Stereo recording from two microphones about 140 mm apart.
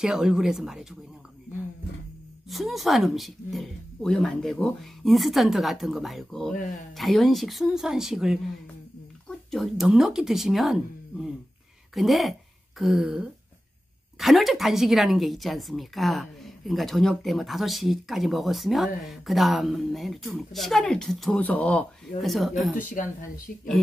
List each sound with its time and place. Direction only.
0.0 s a woman's voice: 5° right (ahead or behind)
2.5 s a woman's voice: centre (ahead or behind)
9.5 s a woman's voice: centre (ahead or behind)
22.8 s speech: 65° left (ahead or behind)